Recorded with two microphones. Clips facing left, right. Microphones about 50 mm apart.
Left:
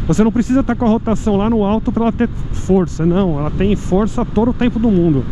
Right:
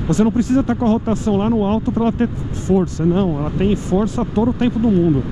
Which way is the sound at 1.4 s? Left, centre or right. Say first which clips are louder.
Left 2 dB; left.